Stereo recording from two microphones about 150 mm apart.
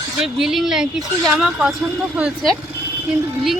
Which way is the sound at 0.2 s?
5° right (ahead or behind).